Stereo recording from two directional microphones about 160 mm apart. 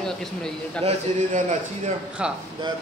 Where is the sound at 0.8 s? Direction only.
50° right (ahead or behind).